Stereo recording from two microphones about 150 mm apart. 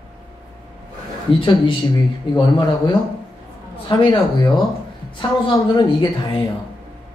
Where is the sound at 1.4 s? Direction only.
35° left (ahead or behind).